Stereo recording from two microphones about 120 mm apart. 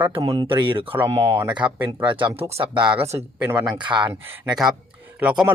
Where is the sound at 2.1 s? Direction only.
45° right (ahead or behind).